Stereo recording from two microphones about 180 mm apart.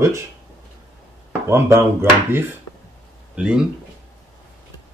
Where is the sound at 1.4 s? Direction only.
15° right (ahead or behind).